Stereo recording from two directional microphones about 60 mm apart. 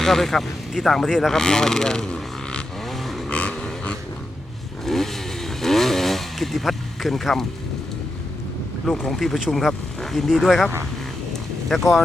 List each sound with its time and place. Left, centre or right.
0.0 s speech: centre
2.8 s a sound: centre
3.2 s a sound: centre
4.9 s motorcycle: centre
8.8 s speech: centre
11.7 s speech: centre